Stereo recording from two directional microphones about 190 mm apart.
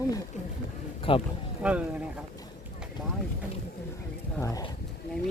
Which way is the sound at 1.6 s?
5° right (ahead or behind).